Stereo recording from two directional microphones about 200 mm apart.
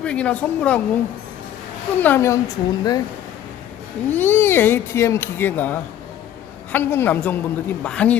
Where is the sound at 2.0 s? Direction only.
10° left (ahead or behind).